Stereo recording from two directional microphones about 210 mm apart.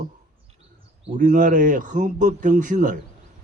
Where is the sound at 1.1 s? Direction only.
35° right (ahead or behind).